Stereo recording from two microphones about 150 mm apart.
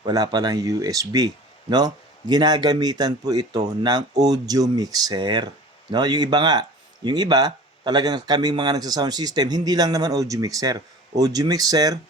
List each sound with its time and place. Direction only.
0.0 s speech: 25° right (ahead or behind)